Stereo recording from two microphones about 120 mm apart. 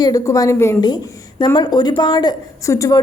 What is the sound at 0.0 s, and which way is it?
Speech, 30° left (ahead or behind).